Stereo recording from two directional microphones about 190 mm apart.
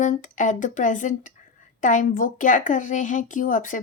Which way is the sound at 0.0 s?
40° left (ahead or behind).